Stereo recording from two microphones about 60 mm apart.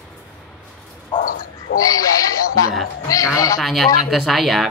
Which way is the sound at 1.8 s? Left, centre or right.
Left.